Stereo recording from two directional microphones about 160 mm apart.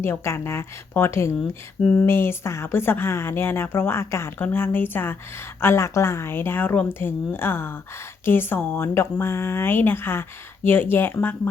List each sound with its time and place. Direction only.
0.0 s speech: 15° left (ahead or behind)